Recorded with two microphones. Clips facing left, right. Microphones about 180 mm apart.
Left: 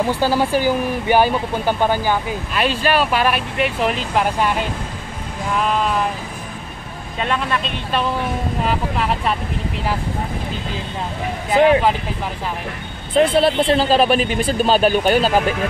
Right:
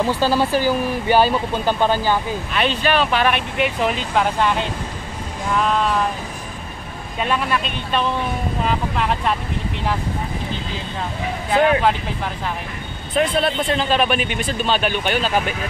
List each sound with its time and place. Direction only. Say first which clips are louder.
0.0 s speech: even; 15° left (ahead or behind)
7.2 s speech: even; 5° right (ahead or behind)
13.1 s speech: left 5 dB; 30° left (ahead or behind)